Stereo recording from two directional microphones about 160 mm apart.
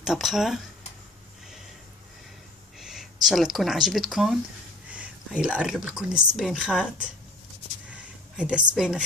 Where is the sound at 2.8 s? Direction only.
Centre (ahead or behind).